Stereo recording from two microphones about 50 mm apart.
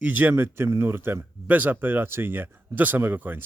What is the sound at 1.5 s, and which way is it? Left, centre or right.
Speech, right.